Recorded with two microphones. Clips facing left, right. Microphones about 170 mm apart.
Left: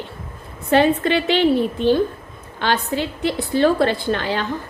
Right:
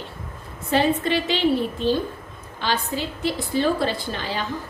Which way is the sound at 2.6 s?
60° left (ahead or behind).